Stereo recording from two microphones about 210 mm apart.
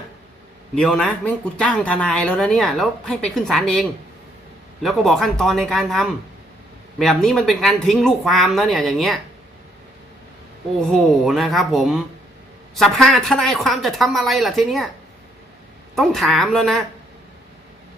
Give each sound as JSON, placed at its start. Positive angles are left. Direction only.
{"t": 0.8, "sound": "speech", "side_deg": 5}
{"t": 10.8, "sound": "speech", "side_deg": 0}
{"t": 16.0, "sound": "speech", "side_deg": 0}